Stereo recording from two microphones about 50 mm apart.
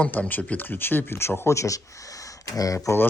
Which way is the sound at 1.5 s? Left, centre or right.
Left.